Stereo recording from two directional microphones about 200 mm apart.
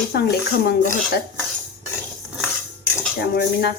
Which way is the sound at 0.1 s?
55° left (ahead or behind).